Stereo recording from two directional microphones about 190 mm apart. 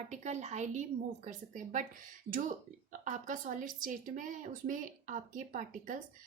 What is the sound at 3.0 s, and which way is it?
Speech, 40° right (ahead or behind).